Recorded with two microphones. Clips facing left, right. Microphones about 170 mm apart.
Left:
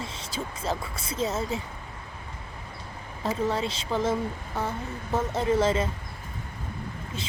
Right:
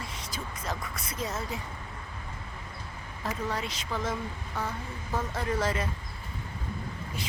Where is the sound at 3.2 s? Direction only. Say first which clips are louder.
Left 6 dB; 25° left (ahead or behind).